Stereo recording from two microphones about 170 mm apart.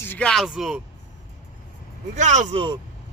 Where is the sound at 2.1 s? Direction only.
45° right (ahead or behind).